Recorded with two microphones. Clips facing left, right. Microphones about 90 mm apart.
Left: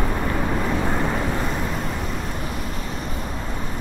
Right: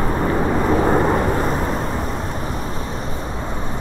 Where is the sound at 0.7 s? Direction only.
40° right (ahead or behind).